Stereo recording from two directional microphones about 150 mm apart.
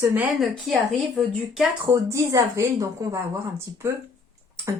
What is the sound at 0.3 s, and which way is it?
Speech, centre (ahead or behind).